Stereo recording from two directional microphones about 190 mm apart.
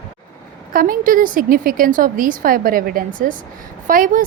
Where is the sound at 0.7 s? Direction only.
50° right (ahead or behind).